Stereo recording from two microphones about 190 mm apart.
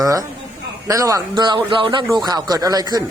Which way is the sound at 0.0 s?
20° right (ahead or behind).